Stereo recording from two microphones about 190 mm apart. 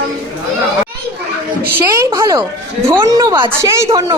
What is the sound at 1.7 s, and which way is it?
A woman's voice, 15° right (ahead or behind).